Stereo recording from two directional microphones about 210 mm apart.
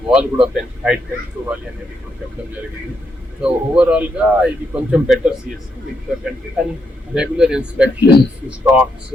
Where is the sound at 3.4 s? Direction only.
5° right (ahead or behind).